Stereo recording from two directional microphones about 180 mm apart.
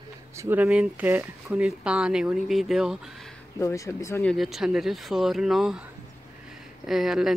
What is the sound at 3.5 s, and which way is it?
Speech, 15° left (ahead or behind).